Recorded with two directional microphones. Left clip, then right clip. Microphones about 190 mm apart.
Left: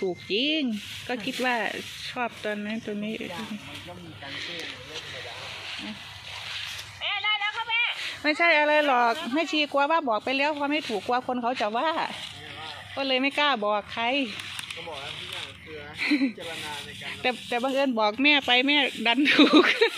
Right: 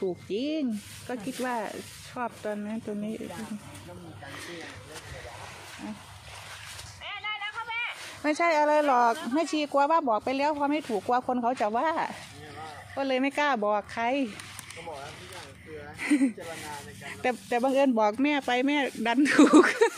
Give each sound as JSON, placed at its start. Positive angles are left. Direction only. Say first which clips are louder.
{"t": 0.0, "sound": "speech", "louder": "left 4 dB", "side_deg": 0}
{"t": 1.0, "sound": "speech", "louder": "left 5 dB", "side_deg": 10}
{"t": 7.0, "sound": "a sound", "louder": "left 8 dB", "side_deg": 40}
{"t": 8.2, "sound": "speech", "louder": "left 3 dB", "side_deg": -10}
{"t": 11.1, "sound": "speech", "louder": "right 1 dB", "side_deg": -15}
{"t": 16.0, "sound": "speech", "louder": "left 1 dB", "side_deg": -15}
{"t": 18.1, "sound": "speech", "louder": "left 6 dB", "side_deg": -10}
{"t": 19.6, "sound": "speech", "louder": "left 1 dB", "side_deg": -10}